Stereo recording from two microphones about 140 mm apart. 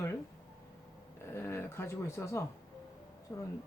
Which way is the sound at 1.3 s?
20° left (ahead or behind).